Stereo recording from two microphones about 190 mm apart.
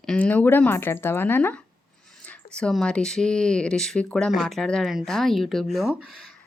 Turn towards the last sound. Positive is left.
turn(degrees=0)  # may be behind; listen again after turning